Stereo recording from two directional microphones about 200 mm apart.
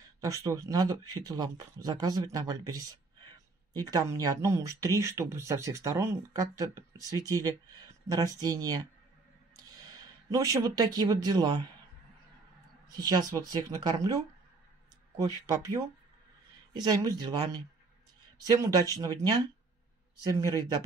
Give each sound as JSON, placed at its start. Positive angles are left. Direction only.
{"t": 0.2, "sound": "speech", "side_deg": -15}
{"t": 12.8, "sound": "speech", "side_deg": -20}
{"t": 15.1, "sound": "speech", "side_deg": -15}